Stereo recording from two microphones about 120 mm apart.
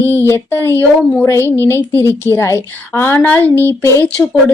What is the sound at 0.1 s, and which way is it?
A woman's voice, 20° left (ahead or behind).